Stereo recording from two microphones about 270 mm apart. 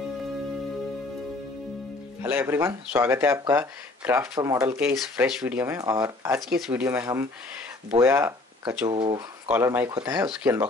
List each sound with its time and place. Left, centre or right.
2.2 s speech: centre